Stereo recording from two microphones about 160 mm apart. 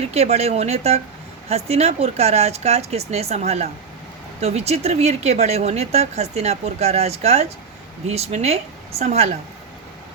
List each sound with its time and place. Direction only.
0.0 s speech: 40° right (ahead or behind)